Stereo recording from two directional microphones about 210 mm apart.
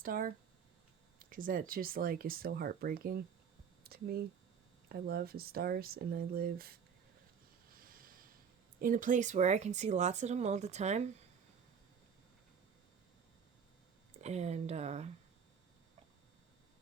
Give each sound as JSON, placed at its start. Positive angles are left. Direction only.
{"t": 0.0, "sound": "speech", "side_deg": -40}
{"t": 7.7, "sound": "a sound", "side_deg": -40}
{"t": 8.8, "sound": "speech", "side_deg": -40}
{"t": 14.2, "sound": "speech", "side_deg": -30}